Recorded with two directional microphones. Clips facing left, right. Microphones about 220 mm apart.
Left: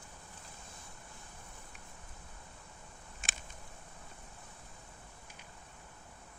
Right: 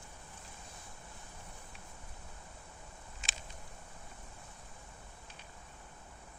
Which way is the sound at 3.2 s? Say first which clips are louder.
Left 2 dB; 50° left (ahead or behind).